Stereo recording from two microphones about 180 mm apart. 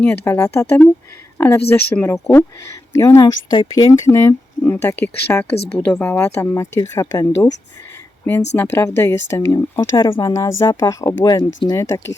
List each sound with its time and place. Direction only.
0.0 s speech: 10° left (ahead or behind)
8.5 s speech: 10° left (ahead or behind)